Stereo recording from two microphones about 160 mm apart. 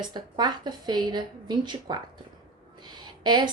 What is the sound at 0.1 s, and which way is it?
A woman's voice, 25° right (ahead or behind).